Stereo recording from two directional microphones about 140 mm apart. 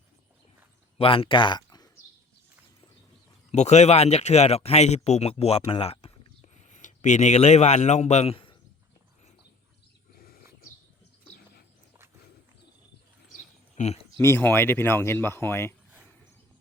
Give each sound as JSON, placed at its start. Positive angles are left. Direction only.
{"t": 0.9, "sound": "speech", "side_deg": 40}
{"t": 3.5, "sound": "speech", "side_deg": 55}
{"t": 13.3, "sound": "a sound", "side_deg": 55}
{"t": 14.2, "sound": "speech", "side_deg": 15}